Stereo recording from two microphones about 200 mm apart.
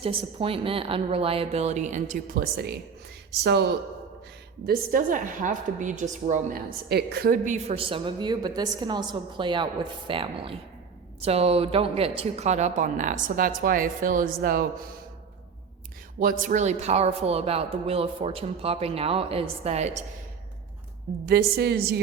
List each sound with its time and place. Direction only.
0.0 s a woman's voice: 30° right (ahead or behind); by 3.7 s 55° right (ahead or behind)
4.6 s a woman's voice: 45° right (ahead or behind)
16.2 s a woman's voice: 40° right (ahead or behind)
21.2 s a woman's voice: 50° right (ahead or behind)